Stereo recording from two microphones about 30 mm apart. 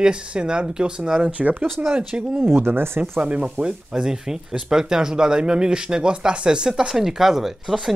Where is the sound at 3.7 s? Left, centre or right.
Right.